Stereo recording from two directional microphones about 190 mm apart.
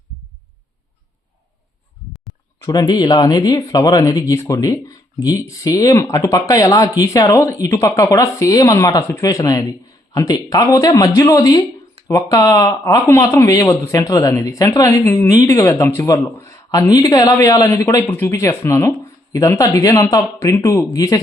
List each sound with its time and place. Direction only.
2.6 s speech: 20° left (ahead or behind)